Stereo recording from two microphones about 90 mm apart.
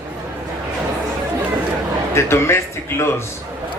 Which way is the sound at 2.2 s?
30° left (ahead or behind).